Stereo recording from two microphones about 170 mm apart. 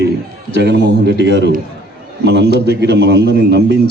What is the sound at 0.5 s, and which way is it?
A man's voice, 85° right.